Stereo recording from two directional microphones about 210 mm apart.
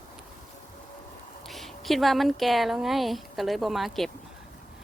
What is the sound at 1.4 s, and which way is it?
Speech, centre (ahead or behind).